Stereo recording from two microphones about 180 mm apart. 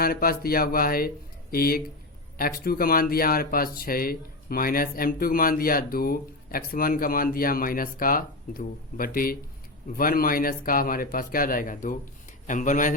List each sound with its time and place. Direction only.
0.0 s speech: 55° left (ahead or behind)